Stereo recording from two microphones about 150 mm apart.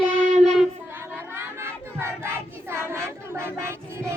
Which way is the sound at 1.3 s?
15° right (ahead or behind).